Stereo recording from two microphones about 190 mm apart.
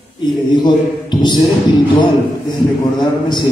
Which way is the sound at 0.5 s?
25° left (ahead or behind).